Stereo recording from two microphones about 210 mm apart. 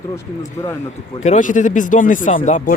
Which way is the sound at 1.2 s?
35° left (ahead or behind).